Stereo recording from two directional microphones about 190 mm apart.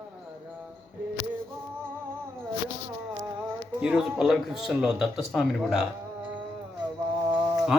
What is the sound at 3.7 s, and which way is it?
Speech, 5° right (ahead or behind).